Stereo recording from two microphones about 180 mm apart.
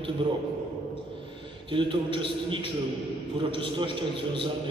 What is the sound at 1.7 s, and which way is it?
A man's voice, 30° right (ahead or behind).